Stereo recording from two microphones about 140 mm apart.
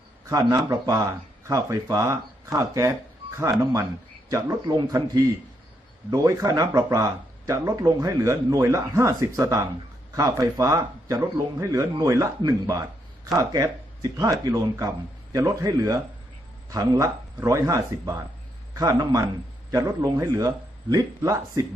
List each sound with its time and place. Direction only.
0.3 s speech: 25° right (ahead or behind)